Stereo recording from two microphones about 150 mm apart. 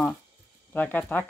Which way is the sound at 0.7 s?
10° left (ahead or behind).